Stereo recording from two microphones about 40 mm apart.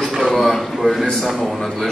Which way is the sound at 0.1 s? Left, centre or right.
Centre.